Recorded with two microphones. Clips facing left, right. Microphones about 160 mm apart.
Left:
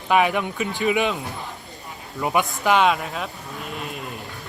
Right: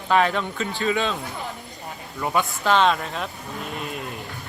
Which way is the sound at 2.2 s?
15° left (ahead or behind).